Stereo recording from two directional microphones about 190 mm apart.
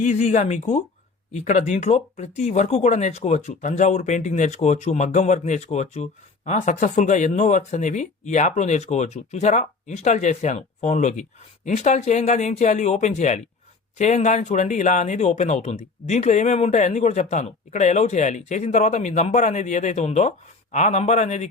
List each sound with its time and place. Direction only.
0.0 s speech: 40° left (ahead or behind)